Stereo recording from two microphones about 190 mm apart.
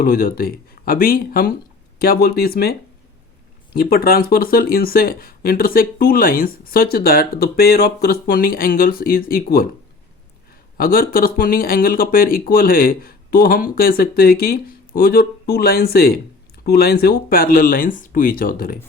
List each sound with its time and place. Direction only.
0.0 s speech: 50° left (ahead or behind)
3.8 s speech: 50° left (ahead or behind)
10.8 s speech: 50° left (ahead or behind)